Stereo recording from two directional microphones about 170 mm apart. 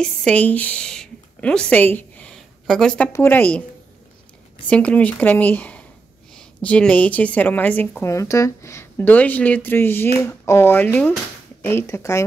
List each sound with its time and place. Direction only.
0.0 s a woman's voice: 5° left (ahead or behind)
4.6 s a woman's voice: 5° left (ahead or behind)